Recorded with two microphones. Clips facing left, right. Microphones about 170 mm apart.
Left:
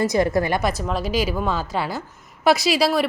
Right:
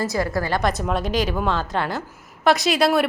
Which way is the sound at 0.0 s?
20° left (ahead or behind).